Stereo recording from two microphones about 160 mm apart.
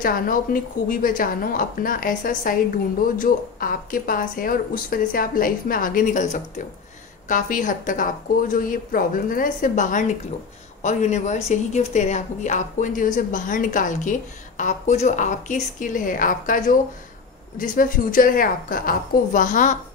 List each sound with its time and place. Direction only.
0.0 s a woman's voice: 60° left (ahead or behind)